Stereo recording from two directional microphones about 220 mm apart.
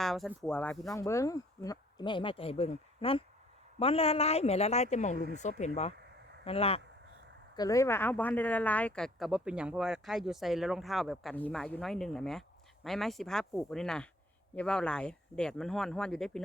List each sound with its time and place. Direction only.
0.0 s speech: centre (ahead or behind)
0.9 s speech: 15° left (ahead or behind)
7.5 s speech: 15° left (ahead or behind)